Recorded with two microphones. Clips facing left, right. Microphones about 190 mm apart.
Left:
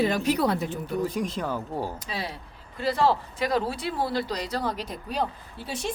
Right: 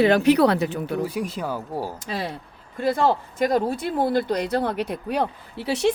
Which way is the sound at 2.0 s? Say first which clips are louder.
Right 5 dB; 50° right (ahead or behind).